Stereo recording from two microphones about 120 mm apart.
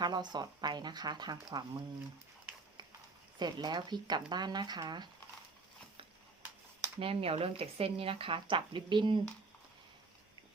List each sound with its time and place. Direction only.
0.0 s speech: 35° right (ahead or behind)
3.3 s speech: 35° right (ahead or behind)
7.0 s speech: 55° right (ahead or behind)